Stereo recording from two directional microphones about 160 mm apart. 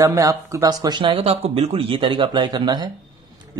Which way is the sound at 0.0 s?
20° right (ahead or behind).